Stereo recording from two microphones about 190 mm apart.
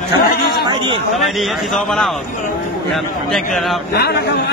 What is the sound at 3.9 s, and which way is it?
Speech, 60° left (ahead or behind).